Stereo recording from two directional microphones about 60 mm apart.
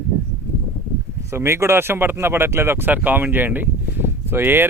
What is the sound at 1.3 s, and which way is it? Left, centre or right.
Speech, right.